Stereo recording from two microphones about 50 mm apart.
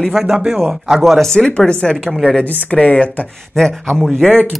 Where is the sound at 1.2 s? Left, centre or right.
Centre.